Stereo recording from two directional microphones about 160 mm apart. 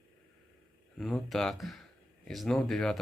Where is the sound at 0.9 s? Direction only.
Centre (ahead or behind).